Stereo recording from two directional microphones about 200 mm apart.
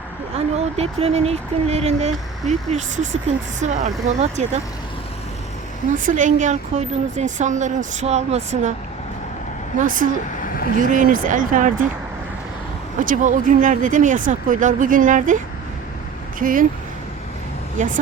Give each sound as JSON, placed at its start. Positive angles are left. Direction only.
{"t": 0.3, "sound": "speech", "side_deg": -30}
{"t": 6.0, "sound": "speech", "side_deg": -40}
{"t": 9.7, "sound": "speech", "side_deg": -45}
{"t": 10.4, "sound": "vehicle", "side_deg": 45}
{"t": 10.8, "sound": "speech", "side_deg": -40}
{"t": 13.0, "sound": "speech", "side_deg": -40}
{"t": 16.4, "sound": "speech", "side_deg": -45}
{"t": 17.8, "sound": "speech", "side_deg": -40}